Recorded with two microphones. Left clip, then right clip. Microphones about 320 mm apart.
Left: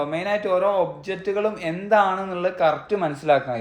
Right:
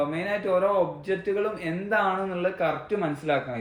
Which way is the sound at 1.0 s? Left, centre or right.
Left.